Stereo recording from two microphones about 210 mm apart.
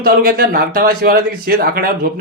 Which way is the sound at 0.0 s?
45° right (ahead or behind).